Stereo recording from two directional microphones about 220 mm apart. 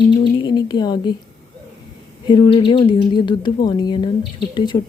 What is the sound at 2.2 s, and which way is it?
Speech, 20° left (ahead or behind).